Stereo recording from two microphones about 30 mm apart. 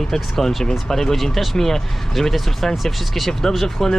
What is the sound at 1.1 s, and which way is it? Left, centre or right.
Speech, centre.